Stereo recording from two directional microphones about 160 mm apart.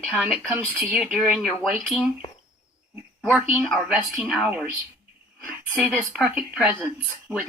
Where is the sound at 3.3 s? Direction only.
Centre (ahead or behind).